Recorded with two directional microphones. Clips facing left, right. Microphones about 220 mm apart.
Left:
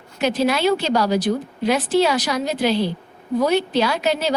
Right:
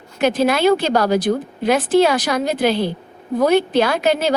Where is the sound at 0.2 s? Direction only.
50° right (ahead or behind).